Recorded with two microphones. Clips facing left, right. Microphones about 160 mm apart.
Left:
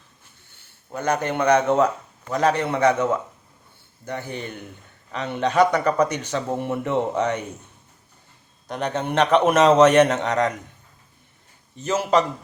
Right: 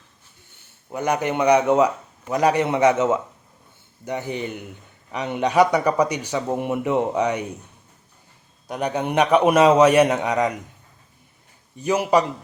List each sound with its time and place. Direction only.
0.9 s a man's voice: 15° right (ahead or behind)
8.6 s a man's voice: 10° right (ahead or behind)
11.8 s a man's voice: 15° right (ahead or behind)